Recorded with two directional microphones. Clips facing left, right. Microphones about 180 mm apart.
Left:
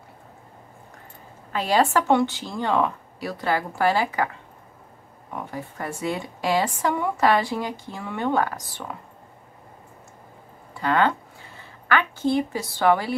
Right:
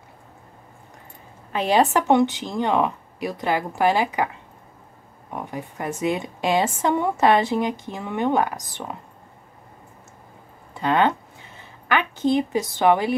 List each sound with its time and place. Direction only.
1.5 s a woman's voice: 20° right (ahead or behind)
5.3 s a woman's voice: 20° right (ahead or behind)
10.7 s a woman's voice: 20° right (ahead or behind)